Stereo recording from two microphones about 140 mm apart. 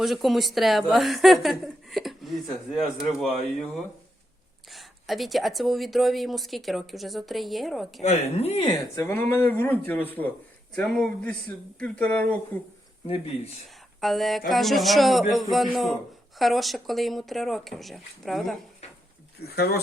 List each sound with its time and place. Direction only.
0.0 s speech: centre (ahead or behind)
4.7 s speech: centre (ahead or behind)
8.0 s speech: 50° left (ahead or behind)
9.0 s speech: 15° left (ahead or behind)
14.0 s speech: centre (ahead or behind)